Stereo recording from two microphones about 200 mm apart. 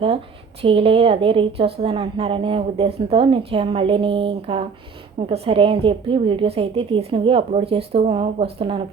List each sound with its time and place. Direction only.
0.6 s a woman's voice: 30° right (ahead or behind)